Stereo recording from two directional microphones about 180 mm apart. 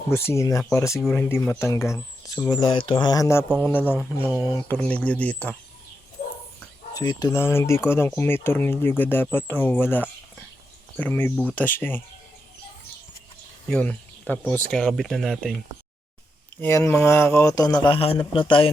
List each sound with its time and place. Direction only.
0.1 s speech: 15° left (ahead or behind)
6.9 s speech: 20° left (ahead or behind)
11.3 s speech: 10° right (ahead or behind)
11.8 s speech: 10° left (ahead or behind)
13.7 s speech: 5° left (ahead or behind)
16.6 s speech: 15° left (ahead or behind)